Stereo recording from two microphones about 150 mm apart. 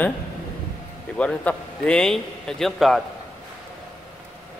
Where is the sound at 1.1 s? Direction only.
10° left (ahead or behind).